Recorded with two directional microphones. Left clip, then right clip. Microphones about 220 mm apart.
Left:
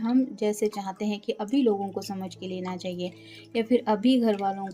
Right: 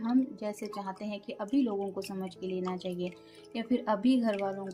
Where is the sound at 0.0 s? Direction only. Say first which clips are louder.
Left 6 dB; 35° left (ahead or behind).